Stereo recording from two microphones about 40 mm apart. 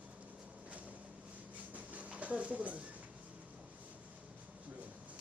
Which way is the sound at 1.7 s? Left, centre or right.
Right.